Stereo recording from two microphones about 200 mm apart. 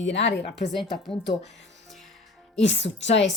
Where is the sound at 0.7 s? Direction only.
Centre (ahead or behind).